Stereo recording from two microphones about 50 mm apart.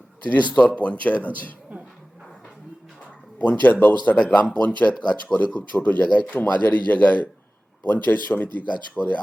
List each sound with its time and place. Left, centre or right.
0.3 s speech: left
3.6 s speech: left
4.1 s speech: left